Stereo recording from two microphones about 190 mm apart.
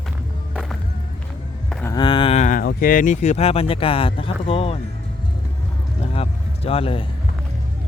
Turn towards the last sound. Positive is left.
turn(degrees=30)  # may be behind; listen again after turning